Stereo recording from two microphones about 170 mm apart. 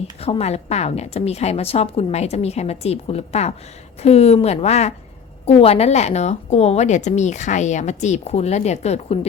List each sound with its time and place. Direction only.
0.2 s a woman's voice: 35° left (ahead or behind)